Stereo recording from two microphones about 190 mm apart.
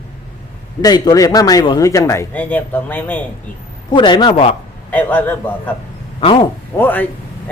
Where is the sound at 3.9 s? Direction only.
25° left (ahead or behind).